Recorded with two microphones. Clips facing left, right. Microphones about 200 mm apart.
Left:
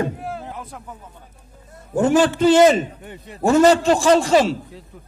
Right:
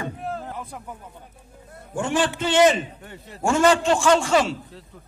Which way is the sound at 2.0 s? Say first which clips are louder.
Left 8 dB; 40° left (ahead or behind).